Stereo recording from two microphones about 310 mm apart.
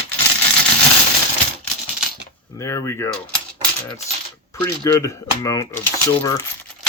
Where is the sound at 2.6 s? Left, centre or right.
Centre.